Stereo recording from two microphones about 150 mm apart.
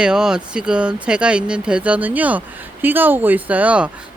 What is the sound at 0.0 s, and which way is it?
Speech, 5° right (ahead or behind).